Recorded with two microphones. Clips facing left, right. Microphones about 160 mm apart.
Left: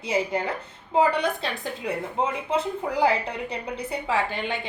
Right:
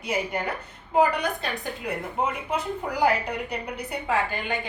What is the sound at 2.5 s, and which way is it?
A woman's voice, 25° left (ahead or behind).